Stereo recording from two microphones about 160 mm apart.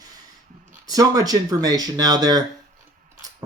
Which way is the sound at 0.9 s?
25° right (ahead or behind).